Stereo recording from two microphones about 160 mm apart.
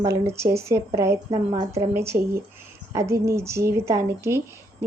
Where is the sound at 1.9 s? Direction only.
15° right (ahead or behind).